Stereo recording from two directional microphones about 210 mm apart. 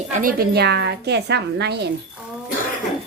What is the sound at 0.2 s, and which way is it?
A woman's voice, 45° right (ahead or behind).